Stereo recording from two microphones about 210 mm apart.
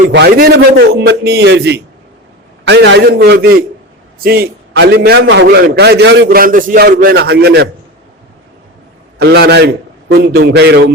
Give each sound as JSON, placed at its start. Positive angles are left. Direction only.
{"t": 0.1, "sound": "a man's voice", "side_deg": -50}
{"t": 9.1, "sound": "a man's voice", "side_deg": -50}